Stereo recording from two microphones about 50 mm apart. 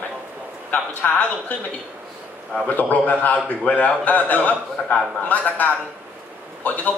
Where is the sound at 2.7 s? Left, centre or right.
Left.